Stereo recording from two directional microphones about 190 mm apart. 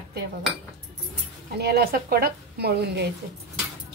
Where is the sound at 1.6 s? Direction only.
55° right (ahead or behind).